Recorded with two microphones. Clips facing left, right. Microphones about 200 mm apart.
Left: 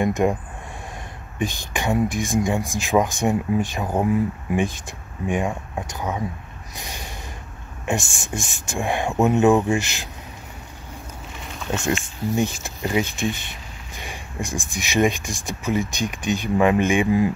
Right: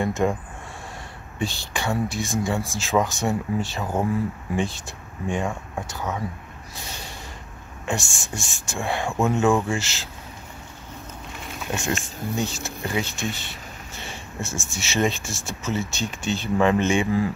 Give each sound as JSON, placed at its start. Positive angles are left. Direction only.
{"t": 0.0, "sound": "speech", "side_deg": 20}
{"t": 1.4, "sound": "speech", "side_deg": 20}
{"t": 6.7, "sound": "a sound", "side_deg": 15}
{"t": 7.8, "sound": "speech", "side_deg": 20}
{"t": 12.6, "sound": "speech", "side_deg": 15}